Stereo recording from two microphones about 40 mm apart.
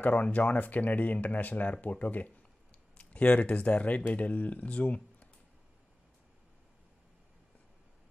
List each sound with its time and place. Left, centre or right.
0.0 s speech: left
2.7 s speech: left